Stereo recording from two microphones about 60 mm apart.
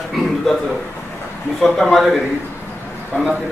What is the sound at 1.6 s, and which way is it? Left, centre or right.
Speech, centre.